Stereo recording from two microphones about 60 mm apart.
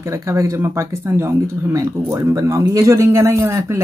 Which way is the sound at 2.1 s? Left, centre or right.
Right.